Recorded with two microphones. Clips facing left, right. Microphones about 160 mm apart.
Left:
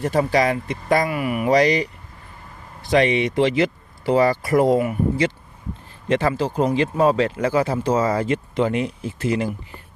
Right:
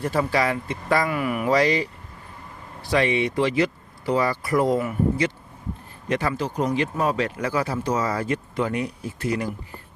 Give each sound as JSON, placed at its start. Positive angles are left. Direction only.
{"t": 0.3, "sound": "speech", "side_deg": 20}
{"t": 2.9, "sound": "speech", "side_deg": 20}
{"t": 6.1, "sound": "speech", "side_deg": 30}